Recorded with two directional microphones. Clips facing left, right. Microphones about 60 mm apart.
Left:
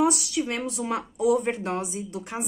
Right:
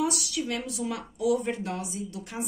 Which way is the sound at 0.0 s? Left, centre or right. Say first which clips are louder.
Left 5 dB; left.